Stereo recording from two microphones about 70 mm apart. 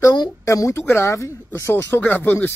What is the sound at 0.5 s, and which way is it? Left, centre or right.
Speech, left.